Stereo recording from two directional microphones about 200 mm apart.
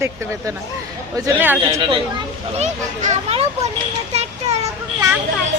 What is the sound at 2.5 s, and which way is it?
Speech, 35° right (ahead or behind).